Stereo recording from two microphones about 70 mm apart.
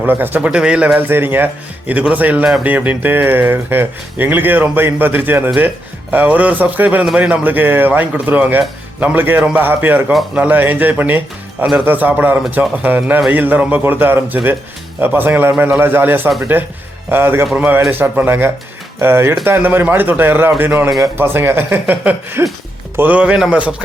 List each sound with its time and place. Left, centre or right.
0.0 s speech: right
0.9 s speech: right
23.0 s speech: right